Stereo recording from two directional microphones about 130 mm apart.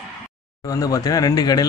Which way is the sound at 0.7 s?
25° left (ahead or behind).